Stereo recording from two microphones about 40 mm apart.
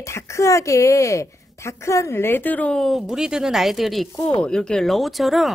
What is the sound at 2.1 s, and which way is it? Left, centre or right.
Speech, left.